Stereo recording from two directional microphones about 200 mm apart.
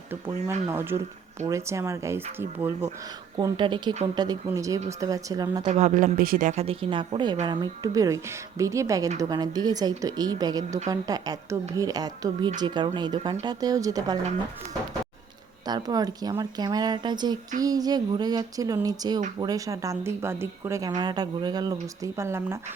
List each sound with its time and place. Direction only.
0.7 s a woman's voice: 10° right (ahead or behind)
3.3 s a woman's voice: 20° right (ahead or behind)
5.6 s a woman's voice: 35° right (ahead or behind); by 14.2 s 15° right (ahead or behind)
15.6 s a woman's voice: 20° right (ahead or behind)